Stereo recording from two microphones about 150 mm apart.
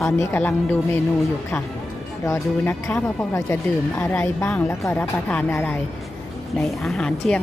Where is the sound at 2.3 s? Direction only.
15° left (ahead or behind).